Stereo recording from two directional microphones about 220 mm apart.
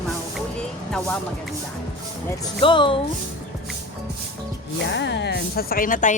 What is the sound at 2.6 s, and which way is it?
Speech, 25° left (ahead or behind).